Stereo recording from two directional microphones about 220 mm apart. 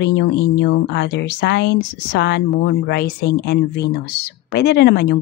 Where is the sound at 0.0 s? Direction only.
50° left (ahead or behind).